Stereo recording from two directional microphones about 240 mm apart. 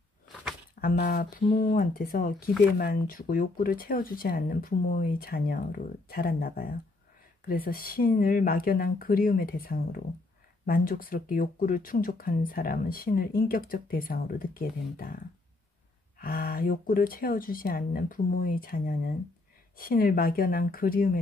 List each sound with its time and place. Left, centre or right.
0.7 s speech: left